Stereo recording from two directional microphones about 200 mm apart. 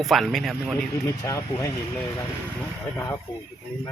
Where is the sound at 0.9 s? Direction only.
15° left (ahead or behind).